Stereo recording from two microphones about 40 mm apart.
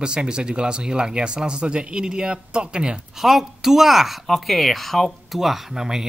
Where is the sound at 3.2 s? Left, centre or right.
Centre.